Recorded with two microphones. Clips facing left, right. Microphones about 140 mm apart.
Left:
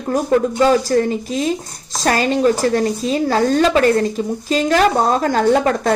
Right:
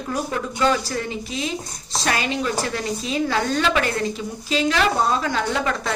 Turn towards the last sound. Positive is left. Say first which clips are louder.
# left 9 dB
turn(degrees=45)  # may be behind; listen again after turning